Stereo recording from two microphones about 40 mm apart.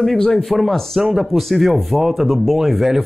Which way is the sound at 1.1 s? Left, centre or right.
Centre.